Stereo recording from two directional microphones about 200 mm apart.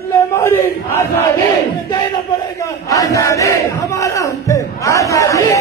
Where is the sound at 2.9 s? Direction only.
15° left (ahead or behind).